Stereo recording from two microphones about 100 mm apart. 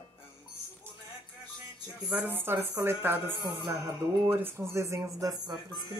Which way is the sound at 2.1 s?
20° right (ahead or behind).